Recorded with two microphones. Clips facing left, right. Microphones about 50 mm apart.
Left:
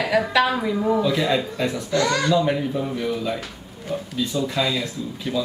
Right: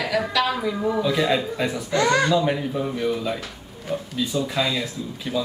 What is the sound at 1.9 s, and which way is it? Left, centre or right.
Speech, right.